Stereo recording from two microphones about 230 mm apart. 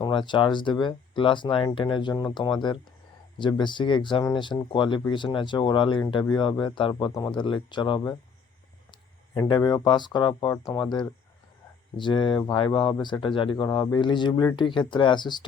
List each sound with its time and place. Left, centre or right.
0.0 s speech: left